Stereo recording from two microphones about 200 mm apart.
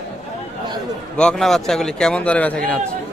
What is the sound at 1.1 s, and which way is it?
A man's voice, 5° left (ahead or behind).